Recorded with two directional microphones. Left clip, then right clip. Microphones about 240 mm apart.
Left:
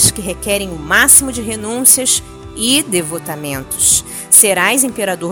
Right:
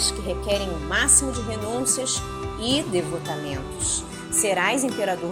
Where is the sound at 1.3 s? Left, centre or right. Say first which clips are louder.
Left 6 dB; left.